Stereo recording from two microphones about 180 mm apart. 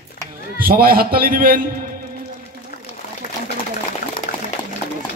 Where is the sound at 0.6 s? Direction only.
55° right (ahead or behind).